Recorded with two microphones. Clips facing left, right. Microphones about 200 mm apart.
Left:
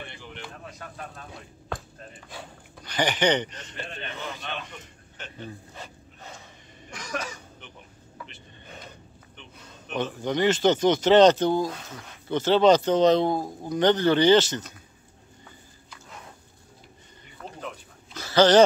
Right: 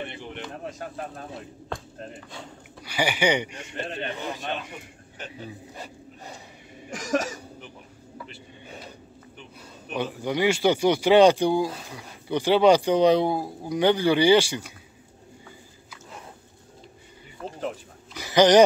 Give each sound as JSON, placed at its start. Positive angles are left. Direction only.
{"t": 0.1, "sound": "vehicle", "side_deg": -20}
{"t": 0.7, "sound": "speech", "side_deg": -45}
{"t": 1.7, "sound": "speech", "side_deg": 5}
{"t": 2.8, "sound": "speech", "side_deg": -10}
{"t": 3.9, "sound": "speech", "side_deg": -40}
{"t": 5.3, "sound": "speech", "side_deg": -10}
{"t": 6.9, "sound": "speech", "side_deg": -45}
{"t": 8.3, "sound": "a sound", "side_deg": -10}
{"t": 9.8, "sound": "speech", "side_deg": -10}
{"t": 18.1, "sound": "dog", "side_deg": -15}